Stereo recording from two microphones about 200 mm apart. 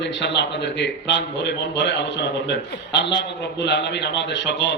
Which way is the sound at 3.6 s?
60° left (ahead or behind).